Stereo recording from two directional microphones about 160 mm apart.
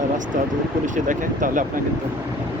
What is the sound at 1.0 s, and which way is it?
Speech, 55° right (ahead or behind).